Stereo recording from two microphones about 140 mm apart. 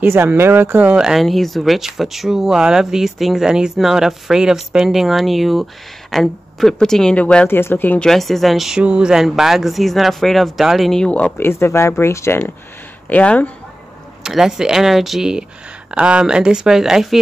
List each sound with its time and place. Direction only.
0.0 s speech: 15° right (ahead or behind); by 13.5 s 10° left (ahead or behind)
14.2 s speech: 5° right (ahead or behind)